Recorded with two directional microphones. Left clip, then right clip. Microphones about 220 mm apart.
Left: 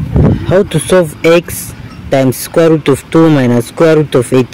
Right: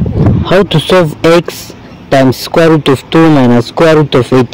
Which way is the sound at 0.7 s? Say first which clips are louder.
Right 2 dB; 15° right (ahead or behind).